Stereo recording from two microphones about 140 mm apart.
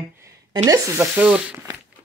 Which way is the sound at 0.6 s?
20° right (ahead or behind).